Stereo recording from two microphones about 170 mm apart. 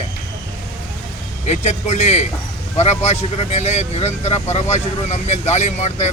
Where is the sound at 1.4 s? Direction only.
40° left (ahead or behind).